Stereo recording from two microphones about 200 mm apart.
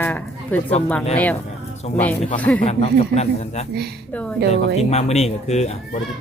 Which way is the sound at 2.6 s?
30° left (ahead or behind).